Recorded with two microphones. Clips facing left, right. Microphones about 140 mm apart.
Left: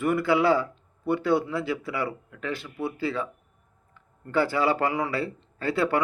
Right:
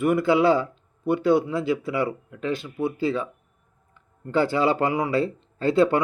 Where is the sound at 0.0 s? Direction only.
15° right (ahead or behind).